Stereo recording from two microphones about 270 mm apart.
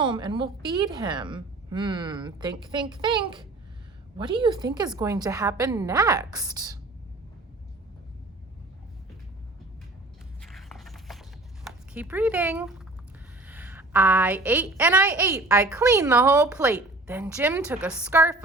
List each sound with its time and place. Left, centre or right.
0.0 s a woman's voice: centre
10.5 s a sound: centre
13.5 s a woman's voice: centre